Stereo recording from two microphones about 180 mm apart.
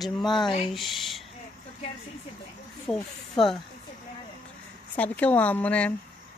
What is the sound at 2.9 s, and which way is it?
Speech, 20° left (ahead or behind).